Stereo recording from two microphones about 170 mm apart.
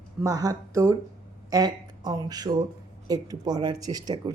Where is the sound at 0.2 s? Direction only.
20° right (ahead or behind).